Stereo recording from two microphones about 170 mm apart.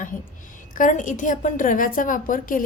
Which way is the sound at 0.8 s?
50° left (ahead or behind).